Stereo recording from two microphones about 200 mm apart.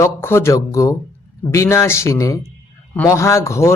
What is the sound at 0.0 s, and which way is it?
A man's voice, 10° left (ahead or behind).